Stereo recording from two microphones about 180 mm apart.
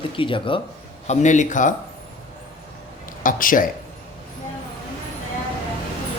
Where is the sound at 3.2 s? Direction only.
50° left (ahead or behind).